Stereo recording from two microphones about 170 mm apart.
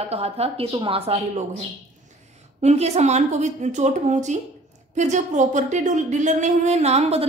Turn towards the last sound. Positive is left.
turn(degrees=-40)  # may be behind; listen again after turning